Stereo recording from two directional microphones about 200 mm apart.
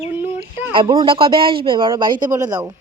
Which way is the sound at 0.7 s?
25° right (ahead or behind).